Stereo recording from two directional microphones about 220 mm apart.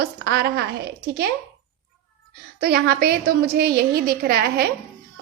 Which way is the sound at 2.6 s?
45° right (ahead or behind).